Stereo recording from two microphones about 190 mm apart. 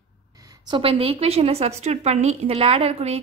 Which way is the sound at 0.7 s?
30° right (ahead or behind).